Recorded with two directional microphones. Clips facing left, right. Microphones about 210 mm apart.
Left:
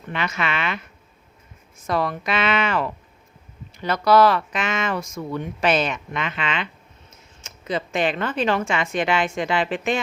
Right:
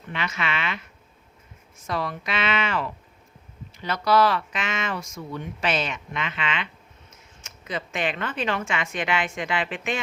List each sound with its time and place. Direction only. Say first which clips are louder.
0.1 s speech: left 3 dB; 50° left (ahead or behind)
1.9 s speech: left 5 dB; 50° left (ahead or behind); by 10.0 s 35° left (ahead or behind)